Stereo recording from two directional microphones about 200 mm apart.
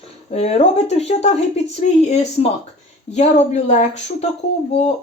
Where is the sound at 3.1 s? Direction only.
35° left (ahead or behind).